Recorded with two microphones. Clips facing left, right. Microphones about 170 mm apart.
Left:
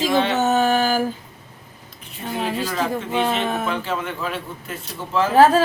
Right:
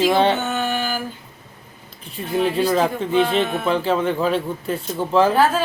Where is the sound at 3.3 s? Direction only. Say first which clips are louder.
Right 3 dB; 30° right (ahead or behind).